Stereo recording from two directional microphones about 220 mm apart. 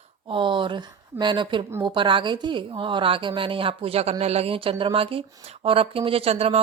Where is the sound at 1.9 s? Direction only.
20° right (ahead or behind).